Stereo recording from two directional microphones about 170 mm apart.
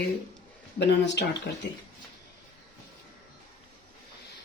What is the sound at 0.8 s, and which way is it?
Speech, 85° left.